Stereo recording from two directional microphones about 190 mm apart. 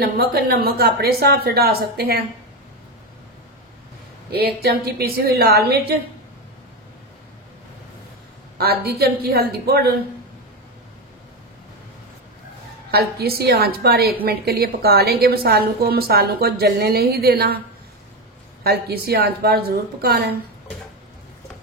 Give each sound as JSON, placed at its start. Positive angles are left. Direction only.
{"t": 0.0, "sound": "a woman's voice", "side_deg": -55}
{"t": 4.3, "sound": "a woman's voice", "side_deg": -55}
{"t": 8.5, "sound": "a woman's voice", "side_deg": -55}
{"t": 12.9, "sound": "a woman's voice", "side_deg": -55}
{"t": 18.6, "sound": "a woman's voice", "side_deg": -55}